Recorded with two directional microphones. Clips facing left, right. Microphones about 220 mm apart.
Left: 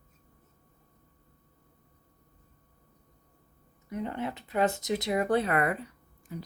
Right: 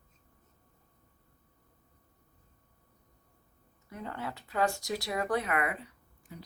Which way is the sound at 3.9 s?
20° left (ahead or behind).